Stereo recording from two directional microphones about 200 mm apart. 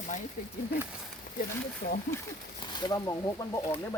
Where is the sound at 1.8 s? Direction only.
50° left (ahead or behind).